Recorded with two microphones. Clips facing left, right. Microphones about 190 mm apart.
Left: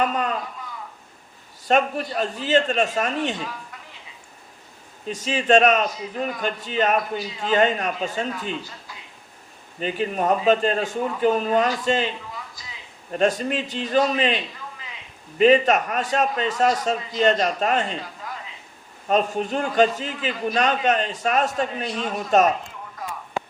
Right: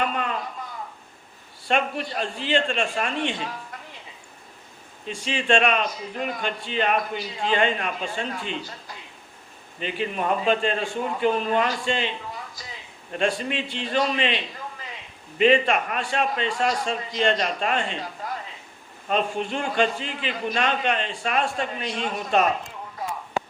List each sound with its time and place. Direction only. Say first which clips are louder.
0.0 s a sound: left 3 dB; 40° left (ahead or behind)
1.6 s a man's voice: left 4 dB; 40° left (ahead or behind)
5.0 s a man's voice: left 3 dB; 40° left (ahead or behind)
9.8 s a man's voice: left 4 dB; 40° left (ahead or behind)
13.1 s a man's voice: left 4 dB; 40° left (ahead or behind)
19.0 s a man's voice: left 3 dB; 40° left (ahead or behind)